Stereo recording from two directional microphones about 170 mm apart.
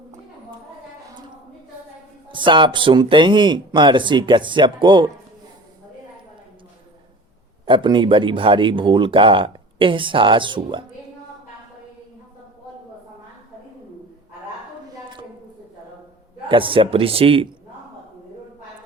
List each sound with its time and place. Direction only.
2.3 s speech: 30° right (ahead or behind)
7.6 s speech: 30° right (ahead or behind)
14.9 s a sound: 30° right (ahead or behind)
16.5 s a man's voice: 30° right (ahead or behind)